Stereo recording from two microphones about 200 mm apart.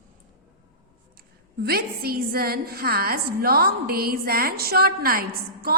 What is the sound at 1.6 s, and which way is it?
A woman's voice, 50° right (ahead or behind).